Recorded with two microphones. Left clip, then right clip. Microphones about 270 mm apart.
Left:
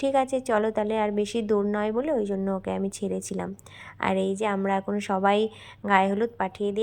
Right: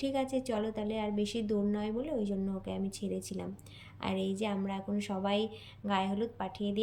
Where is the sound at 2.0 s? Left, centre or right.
Left.